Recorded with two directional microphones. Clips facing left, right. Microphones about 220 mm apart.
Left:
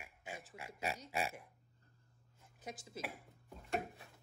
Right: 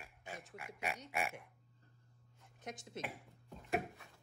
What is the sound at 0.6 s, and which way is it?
Speech, 25° left (ahead or behind).